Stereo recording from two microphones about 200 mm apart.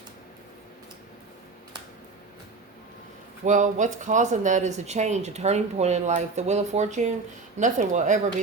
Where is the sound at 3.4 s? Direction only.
40° right (ahead or behind).